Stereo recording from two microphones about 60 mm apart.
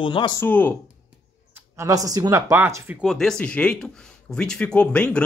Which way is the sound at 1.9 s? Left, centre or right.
Right.